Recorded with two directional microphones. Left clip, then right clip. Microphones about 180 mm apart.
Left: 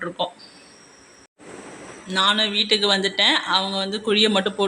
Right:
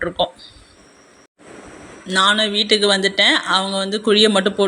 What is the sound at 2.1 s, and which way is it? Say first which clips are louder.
Speech: right 4 dB; 20° right (ahead or behind).